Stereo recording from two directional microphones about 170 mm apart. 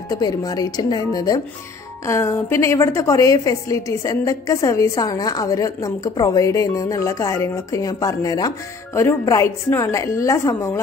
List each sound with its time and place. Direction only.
0.1 s a woman's voice: 25° left (ahead or behind)